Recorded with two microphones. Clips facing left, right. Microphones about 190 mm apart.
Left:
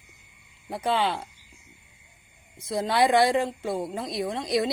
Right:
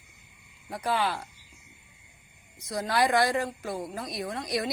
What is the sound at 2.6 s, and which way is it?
Speech, 25° left (ahead or behind).